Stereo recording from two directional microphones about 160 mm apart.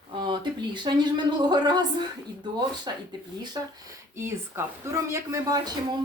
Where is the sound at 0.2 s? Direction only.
30° right (ahead or behind).